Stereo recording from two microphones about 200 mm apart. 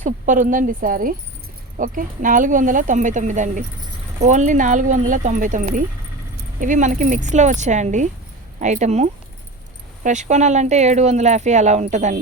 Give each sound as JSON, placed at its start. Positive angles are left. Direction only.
{"t": 0.0, "sound": "speech", "side_deg": -40}